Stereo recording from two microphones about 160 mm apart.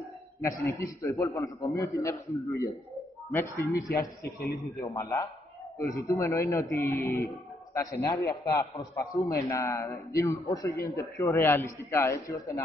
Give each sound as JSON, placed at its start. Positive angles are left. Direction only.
{"t": 0.4, "sound": "a man's voice", "side_deg": 20}
{"t": 4.2, "sound": "a man's voice", "side_deg": 80}
{"t": 4.7, "sound": "a man's voice", "side_deg": 20}